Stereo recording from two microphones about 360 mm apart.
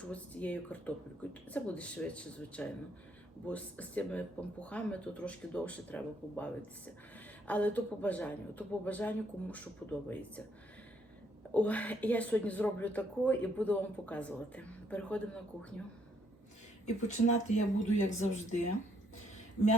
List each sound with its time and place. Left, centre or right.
0.0 s speech: centre
11.5 s speech: centre
16.8 s speech: centre